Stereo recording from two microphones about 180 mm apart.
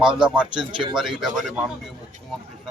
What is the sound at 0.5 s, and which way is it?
Speech, 25° right (ahead or behind).